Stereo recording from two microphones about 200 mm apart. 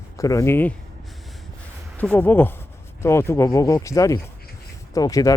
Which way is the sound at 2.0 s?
5° left (ahead or behind).